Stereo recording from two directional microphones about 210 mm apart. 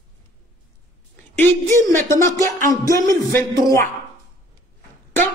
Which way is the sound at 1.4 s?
10° left (ahead or behind).